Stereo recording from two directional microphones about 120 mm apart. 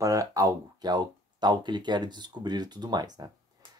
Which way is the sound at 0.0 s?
30° right (ahead or behind).